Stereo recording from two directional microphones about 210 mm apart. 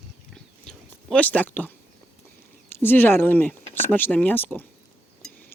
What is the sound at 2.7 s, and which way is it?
Speech, 10° left (ahead or behind).